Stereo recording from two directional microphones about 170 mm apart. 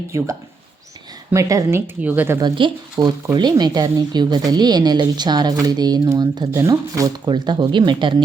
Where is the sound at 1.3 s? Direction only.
20° right (ahead or behind).